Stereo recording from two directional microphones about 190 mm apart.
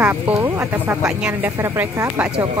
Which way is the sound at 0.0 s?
10° right (ahead or behind).